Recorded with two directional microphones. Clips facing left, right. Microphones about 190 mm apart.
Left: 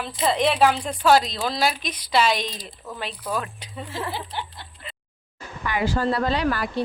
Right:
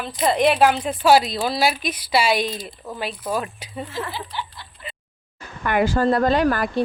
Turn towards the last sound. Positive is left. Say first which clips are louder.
# right 5 dB
turn(degrees=-50)  # may be behind; listen again after turning